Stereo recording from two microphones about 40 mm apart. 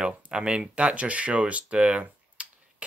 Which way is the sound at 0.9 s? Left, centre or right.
Right.